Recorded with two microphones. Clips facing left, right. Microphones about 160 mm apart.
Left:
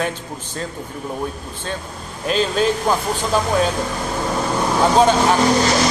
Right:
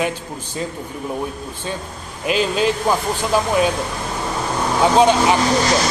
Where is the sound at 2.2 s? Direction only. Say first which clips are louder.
Even; 10° right (ahead or behind).